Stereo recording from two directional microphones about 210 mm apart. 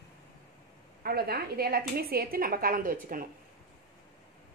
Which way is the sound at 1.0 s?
45° right (ahead or behind).